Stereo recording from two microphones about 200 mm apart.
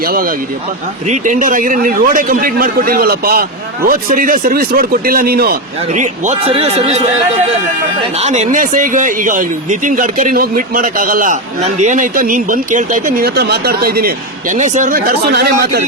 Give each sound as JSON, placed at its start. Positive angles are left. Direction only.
{"t": 0.0, "sound": "speech", "side_deg": -45}
{"t": 8.2, "sound": "speech", "side_deg": -35}
{"t": 14.5, "sound": "speech", "side_deg": -40}